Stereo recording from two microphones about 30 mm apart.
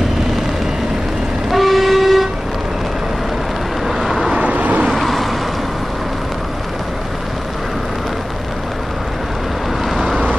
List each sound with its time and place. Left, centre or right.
1.5 s vehicle: centre
3.8 s vehicle: centre
4.4 s vehicle: right
4.8 s vehicle: centre